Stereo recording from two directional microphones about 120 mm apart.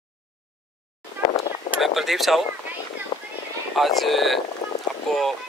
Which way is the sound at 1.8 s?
Centre (ahead or behind).